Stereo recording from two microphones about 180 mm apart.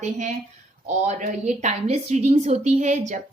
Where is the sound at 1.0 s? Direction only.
40° right (ahead or behind).